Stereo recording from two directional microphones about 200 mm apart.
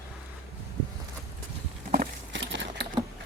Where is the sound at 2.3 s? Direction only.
65° right (ahead or behind).